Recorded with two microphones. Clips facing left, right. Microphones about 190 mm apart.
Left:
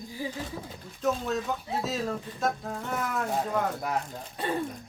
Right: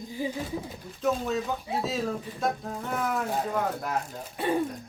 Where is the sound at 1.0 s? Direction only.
Centre (ahead or behind).